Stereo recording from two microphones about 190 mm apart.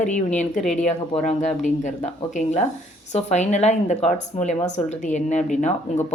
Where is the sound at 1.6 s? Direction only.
40° left (ahead or behind).